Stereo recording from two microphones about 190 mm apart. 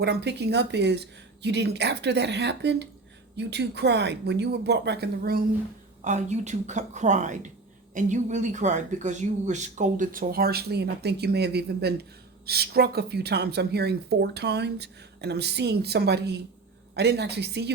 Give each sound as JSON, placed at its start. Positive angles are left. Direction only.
{"t": 0.0, "sound": "speech", "side_deg": -60}
{"t": 6.1, "sound": "a woman's voice", "side_deg": -35}